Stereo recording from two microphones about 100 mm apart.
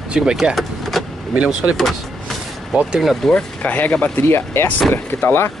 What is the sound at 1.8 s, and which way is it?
Speech, centre (ahead or behind).